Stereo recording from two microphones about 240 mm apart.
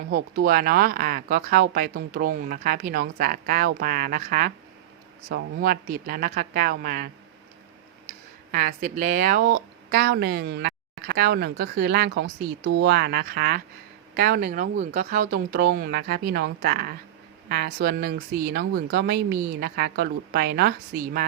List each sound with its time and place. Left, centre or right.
0.1 s speech: right
8.5 s speech: right